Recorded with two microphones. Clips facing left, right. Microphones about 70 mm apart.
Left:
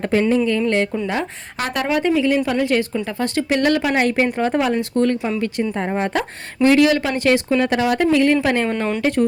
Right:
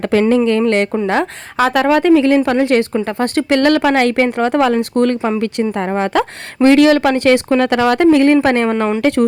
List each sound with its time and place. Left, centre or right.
0.0 s a woman's voice: right
4.8 s a woman's voice: right
5.7 s speech: right
6.6 s a woman's voice: right
9.0 s a woman's voice: right